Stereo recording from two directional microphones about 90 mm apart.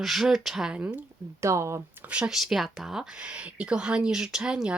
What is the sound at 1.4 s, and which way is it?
Speech, 35° right (ahead or behind).